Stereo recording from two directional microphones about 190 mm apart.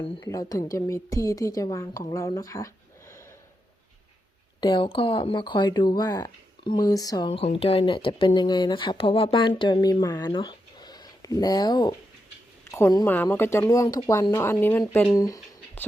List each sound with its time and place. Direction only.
0.0 s a woman's voice: 25° left (ahead or behind)
4.6 s a woman's voice: 25° left (ahead or behind)